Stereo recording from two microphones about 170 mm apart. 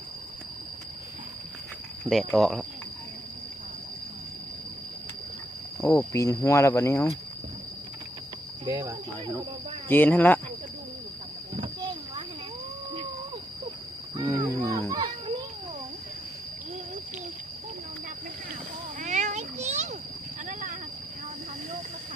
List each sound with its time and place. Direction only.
2.0 s speech: centre (ahead or behind)
5.8 s speech: 15° left (ahead or behind)
8.6 s speech: 20° right (ahead or behind)
9.9 s speech: 10° left (ahead or behind)
11.8 s a sound: 30° right (ahead or behind)
14.2 s children playing: 25° right (ahead or behind)
18.9 s a sound: 45° right (ahead or behind)